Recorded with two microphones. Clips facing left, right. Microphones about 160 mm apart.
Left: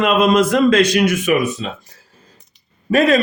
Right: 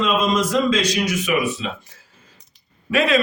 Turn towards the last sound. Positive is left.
turn(degrees=40)  # may be behind; listen again after turning